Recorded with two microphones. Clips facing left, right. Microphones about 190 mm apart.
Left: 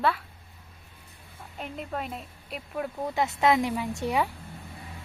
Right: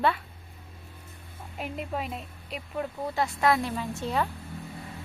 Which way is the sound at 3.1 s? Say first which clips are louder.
Left 2 dB; 20° left (ahead or behind).